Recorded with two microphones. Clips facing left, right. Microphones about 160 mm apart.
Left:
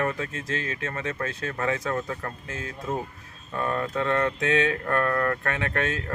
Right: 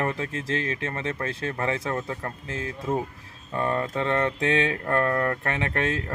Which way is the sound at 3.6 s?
30° right (ahead or behind).